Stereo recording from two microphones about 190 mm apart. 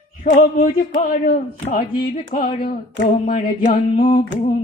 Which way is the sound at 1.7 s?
50° left (ahead or behind).